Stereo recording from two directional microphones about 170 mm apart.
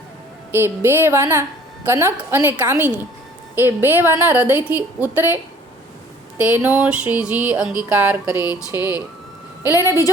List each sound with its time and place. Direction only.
0.5 s a woman's voice: 15° right (ahead or behind)
8.3 s a sound: 20° left (ahead or behind)
9.6 s a woman's voice: 15° right (ahead or behind)